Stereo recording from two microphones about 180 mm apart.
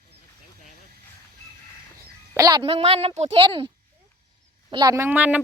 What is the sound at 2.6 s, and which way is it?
Speech, 35° right (ahead or behind).